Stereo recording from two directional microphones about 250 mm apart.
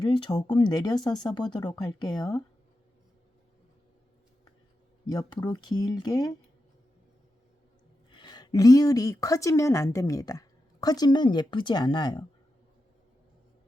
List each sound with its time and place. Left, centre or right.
0.0 s speech: centre
5.0 s speech: centre
8.1 s speech: centre